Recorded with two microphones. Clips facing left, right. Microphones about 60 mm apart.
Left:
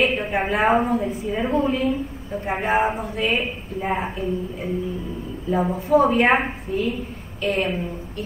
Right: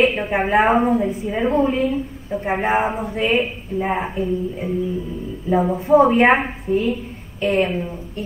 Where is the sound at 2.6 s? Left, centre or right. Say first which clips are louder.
Even; right.